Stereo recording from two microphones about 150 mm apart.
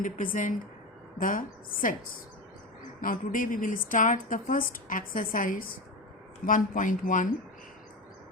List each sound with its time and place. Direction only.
0.0 s a woman's voice: 65° left (ahead or behind)
3.0 s a woman's voice: 65° left (ahead or behind)